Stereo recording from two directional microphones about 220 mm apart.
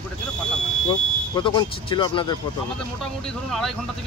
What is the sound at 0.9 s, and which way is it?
Speech, 20° left (ahead or behind).